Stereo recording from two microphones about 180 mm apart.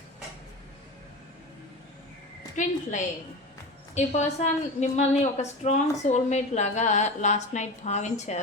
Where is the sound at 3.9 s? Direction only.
40° left (ahead or behind).